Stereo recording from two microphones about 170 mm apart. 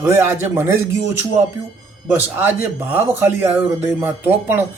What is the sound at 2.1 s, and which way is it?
Speech, 15° right (ahead or behind).